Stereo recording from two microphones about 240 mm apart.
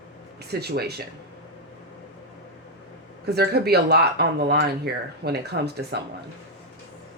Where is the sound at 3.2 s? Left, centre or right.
Right.